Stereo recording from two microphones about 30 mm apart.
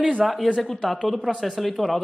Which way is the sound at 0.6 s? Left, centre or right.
Centre.